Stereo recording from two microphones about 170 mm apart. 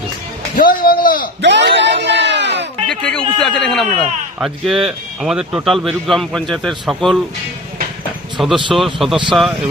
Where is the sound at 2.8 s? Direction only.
5° left (ahead or behind).